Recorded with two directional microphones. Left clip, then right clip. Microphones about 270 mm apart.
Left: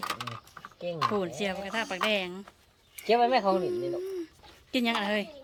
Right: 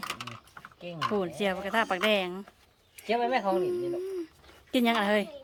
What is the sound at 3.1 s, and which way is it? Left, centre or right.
Speech, left.